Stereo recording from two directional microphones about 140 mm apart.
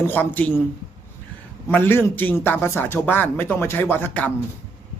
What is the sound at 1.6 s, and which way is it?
A man's voice, 15° left (ahead or behind).